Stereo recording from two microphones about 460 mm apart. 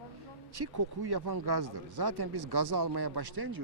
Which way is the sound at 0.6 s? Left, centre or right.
Right.